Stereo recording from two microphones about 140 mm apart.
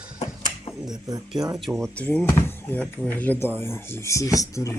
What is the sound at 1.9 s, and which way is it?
Speech, 10° left (ahead or behind).